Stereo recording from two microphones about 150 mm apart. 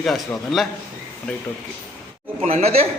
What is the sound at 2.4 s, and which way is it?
Speech, 45° right (ahead or behind).